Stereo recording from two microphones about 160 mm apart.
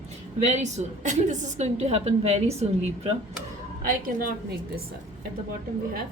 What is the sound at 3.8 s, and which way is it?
Speech, 70° right (ahead or behind).